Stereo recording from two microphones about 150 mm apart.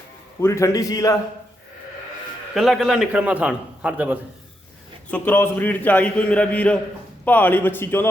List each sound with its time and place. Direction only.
0.4 s a man's voice: 20° left (ahead or behind)
2.6 s a man's voice: centre (ahead or behind)
5.1 s a man's voice: 15° left (ahead or behind)